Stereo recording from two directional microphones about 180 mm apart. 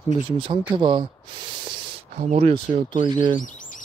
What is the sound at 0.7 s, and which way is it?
Speech, 25° right (ahead or behind).